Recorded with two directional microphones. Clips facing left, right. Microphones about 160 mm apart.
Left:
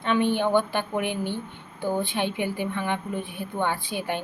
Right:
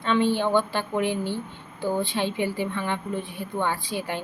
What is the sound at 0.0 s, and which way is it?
A woman's voice, 15° left (ahead or behind).